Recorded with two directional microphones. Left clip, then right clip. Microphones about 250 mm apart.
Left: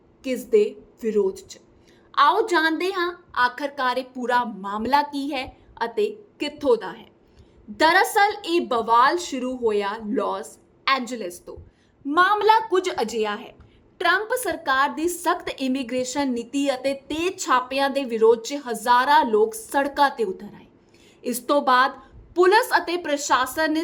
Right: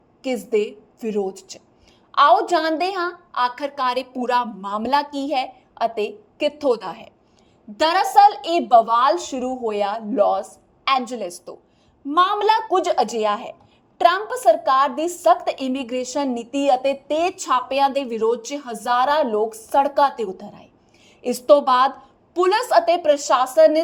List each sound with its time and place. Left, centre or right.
0.5 s a woman's voice: centre